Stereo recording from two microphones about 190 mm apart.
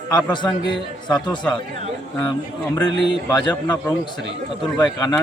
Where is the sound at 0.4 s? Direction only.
25° left (ahead or behind).